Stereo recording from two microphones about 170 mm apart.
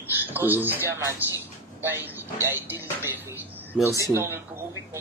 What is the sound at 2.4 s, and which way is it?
Speech, 15° right (ahead or behind).